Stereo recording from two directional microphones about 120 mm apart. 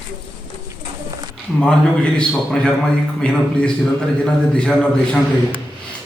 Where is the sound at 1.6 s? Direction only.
5° left (ahead or behind).